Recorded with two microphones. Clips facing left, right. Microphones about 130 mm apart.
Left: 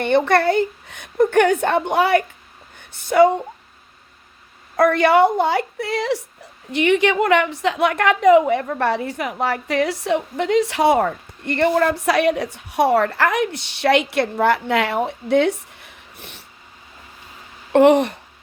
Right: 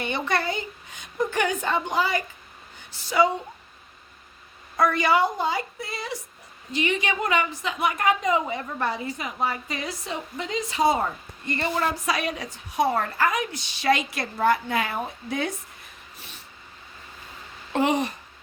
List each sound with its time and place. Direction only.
0.0 s a woman's voice: 60° left (ahead or behind)
4.8 s a woman's voice: 60° left (ahead or behind)
17.7 s a woman's voice: 60° left (ahead or behind)